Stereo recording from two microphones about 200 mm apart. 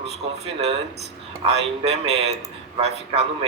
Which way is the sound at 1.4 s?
30° right (ahead or behind).